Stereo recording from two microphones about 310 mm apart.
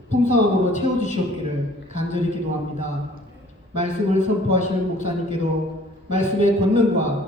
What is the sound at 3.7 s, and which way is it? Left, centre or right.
A man's voice, left.